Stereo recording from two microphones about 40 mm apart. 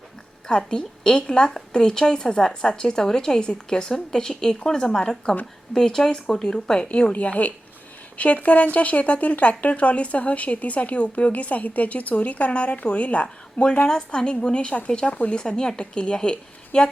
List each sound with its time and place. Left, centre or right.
0.4 s a woman's voice: left
7.1 s speech: left